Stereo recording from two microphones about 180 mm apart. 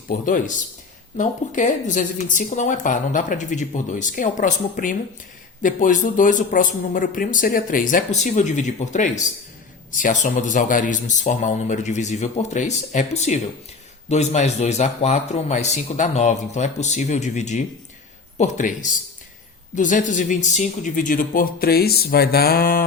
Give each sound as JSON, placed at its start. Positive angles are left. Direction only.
{"t": 0.1, "sound": "a woman's voice", "side_deg": 45}